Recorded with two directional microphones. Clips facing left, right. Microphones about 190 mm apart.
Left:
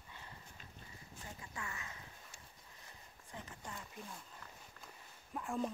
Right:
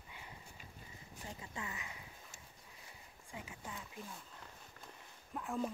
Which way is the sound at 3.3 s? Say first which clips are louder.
Right 1 dB; 10° right (ahead or behind).